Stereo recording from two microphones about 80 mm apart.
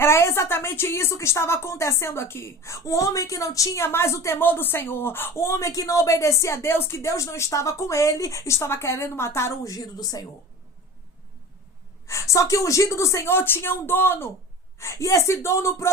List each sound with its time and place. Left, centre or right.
0.0 s a woman's voice: left
3.8 s a woman's voice: left
12.0 s a woman's voice: left
14.8 s a woman's voice: left